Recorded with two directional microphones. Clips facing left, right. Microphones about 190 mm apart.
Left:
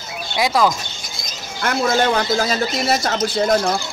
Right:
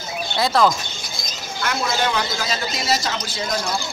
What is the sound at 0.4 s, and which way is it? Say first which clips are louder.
Speech: left 1 dB; 10° left (ahead or behind).